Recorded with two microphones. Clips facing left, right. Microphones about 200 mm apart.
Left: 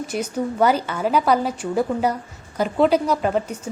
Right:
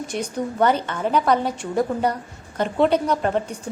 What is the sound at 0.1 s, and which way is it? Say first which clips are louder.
A woman's voice: left 2 dB; 5° left (ahead or behind).